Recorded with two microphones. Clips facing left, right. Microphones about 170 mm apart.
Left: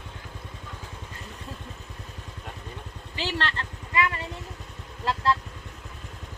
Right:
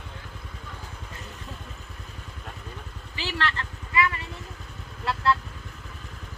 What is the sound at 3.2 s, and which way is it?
Vehicle, 35° left (ahead or behind).